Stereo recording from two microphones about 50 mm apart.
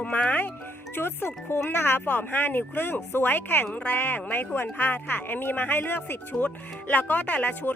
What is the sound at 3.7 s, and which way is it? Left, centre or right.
Speech, left.